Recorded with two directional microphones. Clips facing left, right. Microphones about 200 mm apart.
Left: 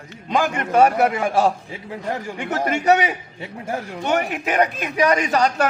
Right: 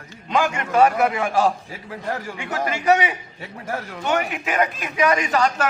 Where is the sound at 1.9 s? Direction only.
20° left (ahead or behind).